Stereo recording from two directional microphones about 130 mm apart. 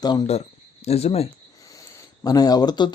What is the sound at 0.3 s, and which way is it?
Speech, 50° left (ahead or behind).